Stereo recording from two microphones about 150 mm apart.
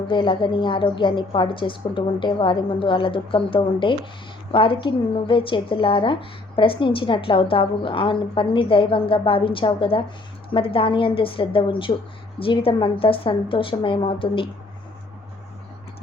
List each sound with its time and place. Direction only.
0.1 s speech: 35° left (ahead or behind)